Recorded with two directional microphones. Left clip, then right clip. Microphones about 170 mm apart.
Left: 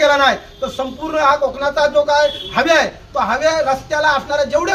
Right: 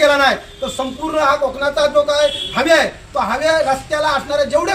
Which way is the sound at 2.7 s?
Centre (ahead or behind).